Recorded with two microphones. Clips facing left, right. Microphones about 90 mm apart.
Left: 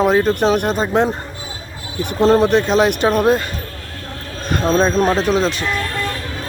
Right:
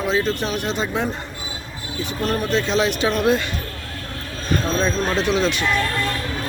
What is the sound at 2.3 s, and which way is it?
Speech, 60° left (ahead or behind).